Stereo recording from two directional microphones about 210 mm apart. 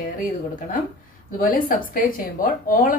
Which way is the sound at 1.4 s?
45° left (ahead or behind).